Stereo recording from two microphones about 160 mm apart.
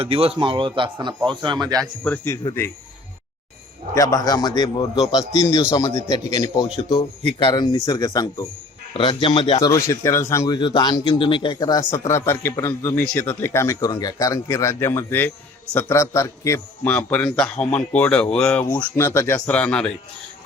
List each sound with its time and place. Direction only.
0.0 s a man's voice: 35° right (ahead or behind)
1.8 s speech: 10° left (ahead or behind)
3.9 s speech: 20° left (ahead or behind)
6.9 s speech: 30° left (ahead or behind)
16.9 s speech: 10° left (ahead or behind)